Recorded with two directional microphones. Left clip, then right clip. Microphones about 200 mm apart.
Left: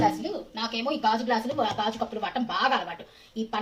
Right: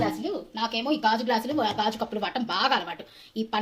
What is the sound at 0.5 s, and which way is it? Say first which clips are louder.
A woman's voice: right 2 dB; 55° right (ahead or behind).